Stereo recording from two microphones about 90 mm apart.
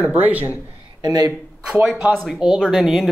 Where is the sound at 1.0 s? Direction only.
50° right (ahead or behind).